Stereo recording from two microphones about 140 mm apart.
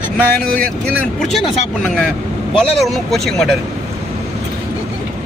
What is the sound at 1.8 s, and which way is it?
Speech, 10° left (ahead or behind).